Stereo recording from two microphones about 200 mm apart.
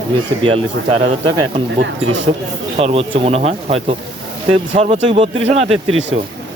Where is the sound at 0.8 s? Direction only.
70° right (ahead or behind).